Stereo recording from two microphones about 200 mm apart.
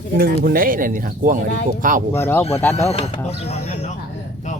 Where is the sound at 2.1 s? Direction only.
10° left (ahead or behind).